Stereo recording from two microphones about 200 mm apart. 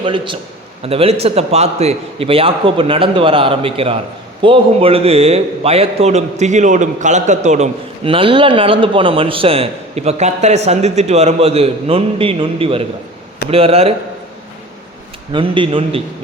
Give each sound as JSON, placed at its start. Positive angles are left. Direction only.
{"t": 0.0, "sound": "a man's voice", "side_deg": -25}
{"t": 15.3, "sound": "a man's voice", "side_deg": -25}